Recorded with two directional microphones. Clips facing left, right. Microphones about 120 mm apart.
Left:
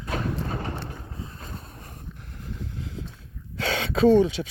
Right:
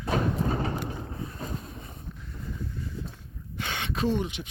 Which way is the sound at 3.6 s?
90° left.